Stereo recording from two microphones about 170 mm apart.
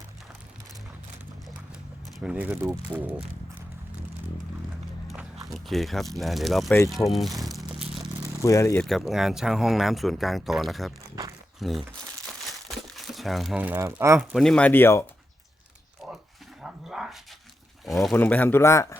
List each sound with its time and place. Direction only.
2.1 s speech: 5° right (ahead or behind)
5.0 s speech: centre (ahead or behind)
7.4 s crumpling: centre (ahead or behind)
8.4 s speech: 15° left (ahead or behind)
8.8 s speech: centre (ahead or behind)
11.1 s a sound: 20° right (ahead or behind)
11.6 s speech: centre (ahead or behind)
12.5 s crumpling: centre (ahead or behind); by 14.3 s 15° right (ahead or behind)
14.3 s speech: 5° left (ahead or behind)
16.0 s a sound: centre (ahead or behind)
17.8 s speech: centre (ahead or behind); by 18.9 s 15° left (ahead or behind)